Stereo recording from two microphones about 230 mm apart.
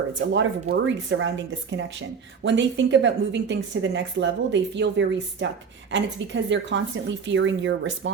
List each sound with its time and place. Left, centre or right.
0.3 s speech: right